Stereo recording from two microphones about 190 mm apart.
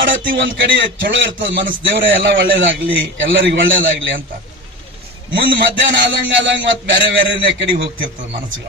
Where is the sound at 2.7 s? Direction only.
90° right.